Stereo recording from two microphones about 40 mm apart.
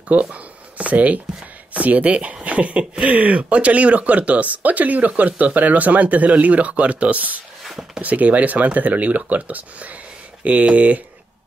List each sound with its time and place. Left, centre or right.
0.1 s speech: right
7.6 s a sound: centre
8.0 s speech: right